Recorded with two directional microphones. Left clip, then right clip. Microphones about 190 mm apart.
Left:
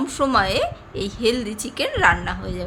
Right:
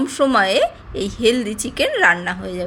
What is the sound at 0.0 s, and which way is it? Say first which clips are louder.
A woman's voice: right 3 dB; 20° right (ahead or behind).